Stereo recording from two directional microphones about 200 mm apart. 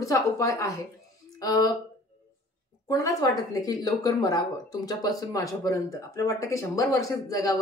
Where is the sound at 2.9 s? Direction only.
15° left (ahead or behind).